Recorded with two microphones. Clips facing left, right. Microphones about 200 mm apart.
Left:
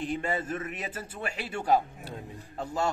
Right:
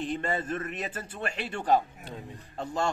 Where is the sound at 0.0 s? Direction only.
10° left (ahead or behind).